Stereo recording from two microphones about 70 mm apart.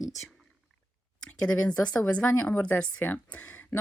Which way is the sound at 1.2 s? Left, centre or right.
Centre.